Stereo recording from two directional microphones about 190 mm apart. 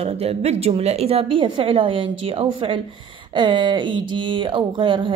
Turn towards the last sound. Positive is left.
turn(degrees=-25)  # may be behind; listen again after turning